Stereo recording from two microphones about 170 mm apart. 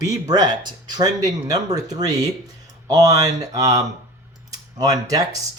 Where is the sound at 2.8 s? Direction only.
20° right (ahead or behind).